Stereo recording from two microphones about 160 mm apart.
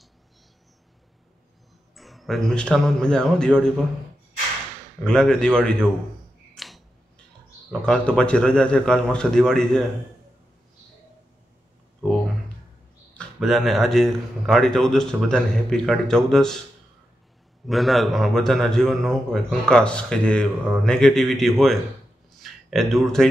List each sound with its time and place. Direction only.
2.0 s a man's voice: centre (ahead or behind)
5.0 s a man's voice: 5° left (ahead or behind)
6.5 s tick-tock: centre (ahead or behind)
7.8 s a man's voice: 5° left (ahead or behind)
13.2 s a man's voice: centre (ahead or behind)
17.6 s a man's voice: centre (ahead or behind)